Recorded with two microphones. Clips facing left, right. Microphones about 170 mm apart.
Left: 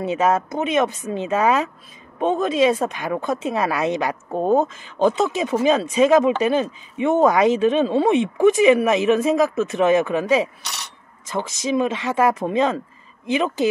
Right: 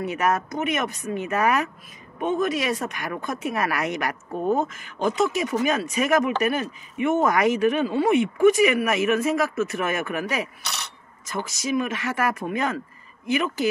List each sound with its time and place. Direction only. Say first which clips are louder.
0.0 s speech: left 4 dB; 25° left (ahead or behind)